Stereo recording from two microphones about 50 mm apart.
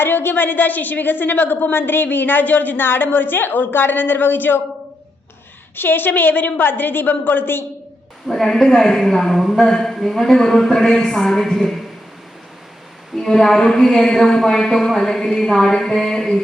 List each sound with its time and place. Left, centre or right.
0.0 s a woman's voice: left
5.7 s a woman's voice: left
8.3 s a man's voice: centre
13.1 s a man's voice: centre